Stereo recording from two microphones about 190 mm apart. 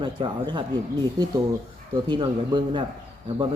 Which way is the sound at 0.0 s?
25° right (ahead or behind).